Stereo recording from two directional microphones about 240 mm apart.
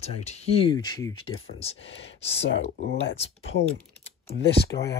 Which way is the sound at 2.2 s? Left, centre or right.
Left.